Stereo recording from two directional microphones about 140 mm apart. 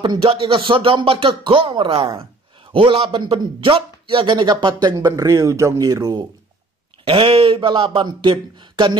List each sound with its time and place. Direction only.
0.0 s a man's voice: 35° right (ahead or behind)
7.1 s a man's voice: 40° right (ahead or behind)